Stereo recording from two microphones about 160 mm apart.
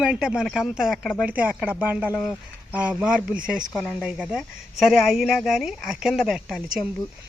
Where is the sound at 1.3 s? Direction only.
10° right (ahead or behind).